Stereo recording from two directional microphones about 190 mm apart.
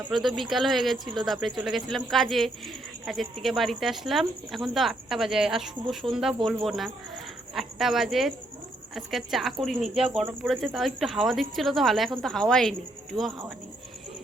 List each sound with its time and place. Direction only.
0.1 s speech: centre (ahead or behind)